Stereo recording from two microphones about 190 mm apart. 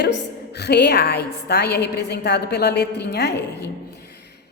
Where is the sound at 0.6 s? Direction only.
60° left (ahead or behind).